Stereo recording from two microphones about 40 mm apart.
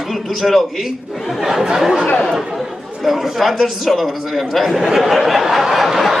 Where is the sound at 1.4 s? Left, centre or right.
Centre.